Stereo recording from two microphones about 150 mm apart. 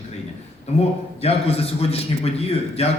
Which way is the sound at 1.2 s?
40° left (ahead or behind).